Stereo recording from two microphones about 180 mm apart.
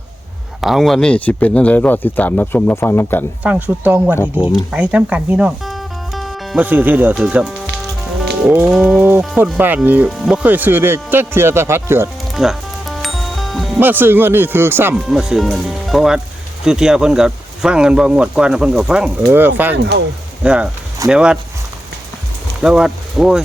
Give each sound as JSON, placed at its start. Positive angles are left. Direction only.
{"t": 0.6, "sound": "speech", "side_deg": 0}
{"t": 3.4, "sound": "speech", "side_deg": -10}
{"t": 12.3, "sound": "music", "side_deg": 0}
{"t": 13.7, "sound": "speech", "side_deg": -10}
{"t": 15.0, "sound": "speech", "side_deg": 0}
{"t": 19.7, "sound": "speech", "side_deg": -70}
{"t": 20.4, "sound": "speech", "side_deg": -5}
{"t": 22.6, "sound": "speech", "side_deg": -5}